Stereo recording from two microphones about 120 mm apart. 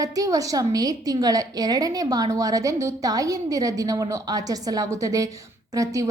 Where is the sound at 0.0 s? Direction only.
30° right (ahead or behind).